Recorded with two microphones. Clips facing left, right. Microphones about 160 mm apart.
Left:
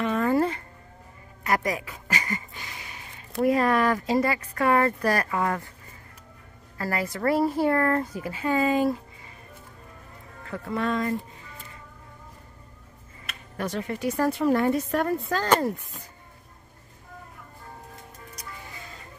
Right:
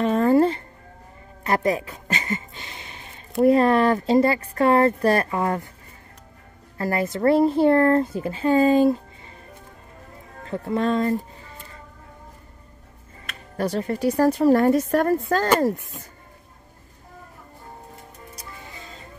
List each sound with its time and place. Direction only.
0.0 s music: 30° right (ahead or behind)
1.4 s a sound: 30° right (ahead or behind)
3.4 s speech: 30° right (ahead or behind)
6.8 s speech: 25° right (ahead or behind)
10.4 s speech: 30° right (ahead or behind)
13.6 s a woman's voice: 35° right (ahead or behind)
18.3 s music: 25° right (ahead or behind)